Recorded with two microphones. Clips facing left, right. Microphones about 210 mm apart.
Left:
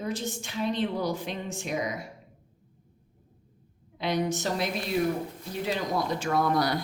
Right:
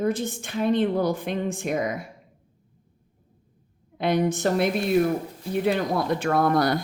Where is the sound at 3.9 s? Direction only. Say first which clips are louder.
Right 5 dB; 55° right (ahead or behind).